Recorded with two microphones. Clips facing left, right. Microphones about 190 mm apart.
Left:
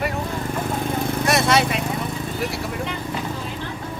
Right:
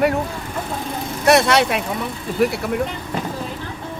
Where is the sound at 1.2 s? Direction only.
65° right (ahead or behind).